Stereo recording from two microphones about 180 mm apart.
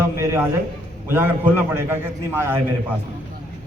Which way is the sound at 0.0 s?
15° right (ahead or behind).